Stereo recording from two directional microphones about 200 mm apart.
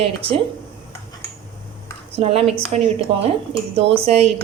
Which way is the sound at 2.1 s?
30° right (ahead or behind).